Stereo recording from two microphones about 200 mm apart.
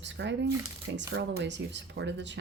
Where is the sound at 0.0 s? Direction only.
65° right (ahead or behind).